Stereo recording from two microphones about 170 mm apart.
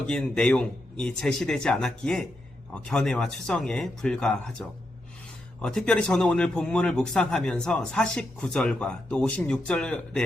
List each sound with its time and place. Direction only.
0.1 s speech: 5° left (ahead or behind)
5.6 s speech: 5° left (ahead or behind)